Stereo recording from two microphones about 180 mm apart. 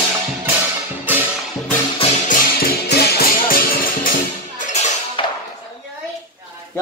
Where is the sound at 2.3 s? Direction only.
55° left (ahead or behind).